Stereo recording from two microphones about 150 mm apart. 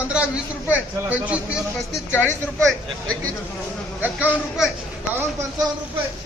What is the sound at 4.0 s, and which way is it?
Speech, 10° right (ahead or behind).